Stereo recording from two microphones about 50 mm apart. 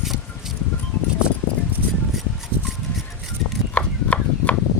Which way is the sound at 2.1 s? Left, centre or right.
Centre.